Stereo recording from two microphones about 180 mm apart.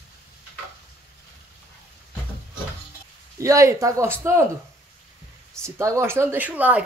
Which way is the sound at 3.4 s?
15° right (ahead or behind).